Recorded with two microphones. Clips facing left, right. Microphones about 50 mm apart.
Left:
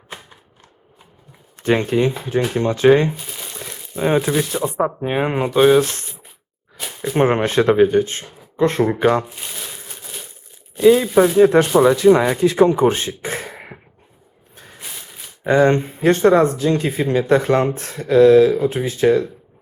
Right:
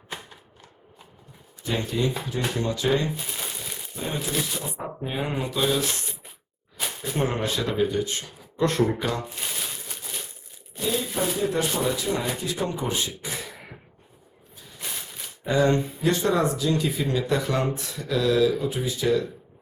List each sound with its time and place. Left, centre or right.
1.5 s speech: left
3.2 s crumpling: centre
3.6 s crumpling: left
4.6 s speech: left
7.2 s speech: left
9.3 s crumpling: centre
10.8 s speech: left
11.3 s speech: left
14.5 s a sound: left
14.8 s a sound: centre
15.4 s speech: left